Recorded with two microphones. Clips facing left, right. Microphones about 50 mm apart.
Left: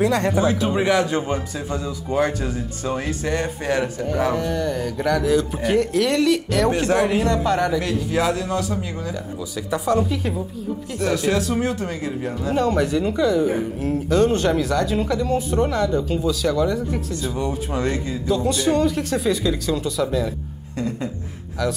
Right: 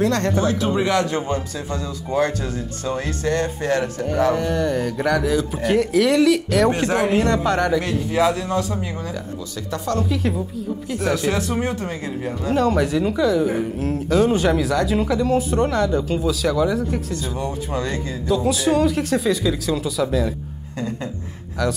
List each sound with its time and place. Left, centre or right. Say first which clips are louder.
0.0 s speech: left 1 dB; centre
6.9 s speech: left 1 dB; right
7.4 s speech: right 1 dB; centre
9.7 s speech: left 4 dB; centre
11.1 s speech: left 1 dB; right
12.4 s speech: right 1 dB; centre
18.3 s speech: right 1 dB; centre